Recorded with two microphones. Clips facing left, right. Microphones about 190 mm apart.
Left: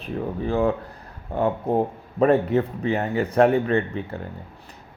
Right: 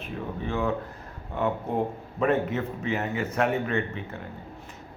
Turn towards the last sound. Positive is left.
turn(degrees=35)  # may be behind; listen again after turning